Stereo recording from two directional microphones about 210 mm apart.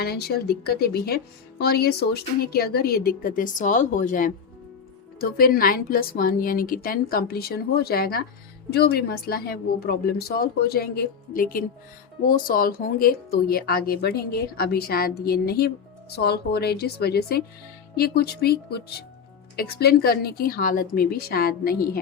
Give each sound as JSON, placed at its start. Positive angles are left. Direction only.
{"t": 0.0, "sound": "speech", "side_deg": 50}